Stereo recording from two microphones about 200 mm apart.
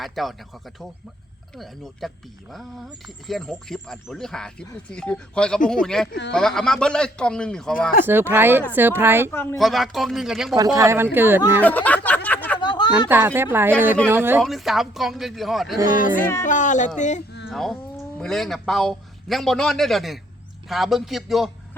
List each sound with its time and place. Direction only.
0.0 s a man's voice: centre (ahead or behind)
1.5 s a man's voice: centre (ahead or behind)
8.0 s speech: 10° right (ahead or behind)
9.3 s speech: 10° left (ahead or behind)
9.6 s a man's voice: centre (ahead or behind)
10.8 s speech: 15° right (ahead or behind)
11.6 s speech: 10° left (ahead or behind)
12.0 s a sound: 10° left (ahead or behind)
12.5 s a sound: 20° left (ahead or behind)
13.1 s a man's voice: 10° right (ahead or behind)
15.9 s speech: 40° left (ahead or behind)
17.5 s a man's voice: centre (ahead or behind)